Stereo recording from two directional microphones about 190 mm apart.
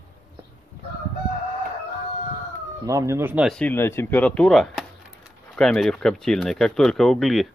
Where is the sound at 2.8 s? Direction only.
15° right (ahead or behind).